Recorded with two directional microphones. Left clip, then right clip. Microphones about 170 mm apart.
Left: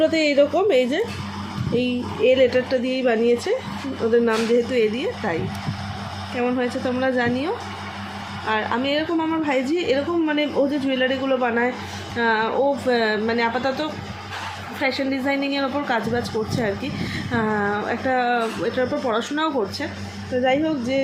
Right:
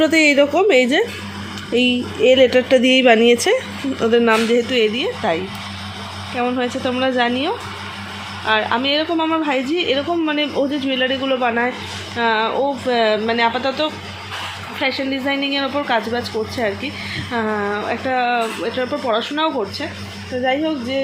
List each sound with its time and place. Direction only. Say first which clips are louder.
0.0 s a woman's voice: right 4 dB; 30° right (ahead or behind)
4.0 s a woman's voice: right 4 dB; 25° right (ahead or behind)
6.3 s a woman's voice: right 3 dB; 5° right (ahead or behind); by 21.0 s 10° left (ahead or behind)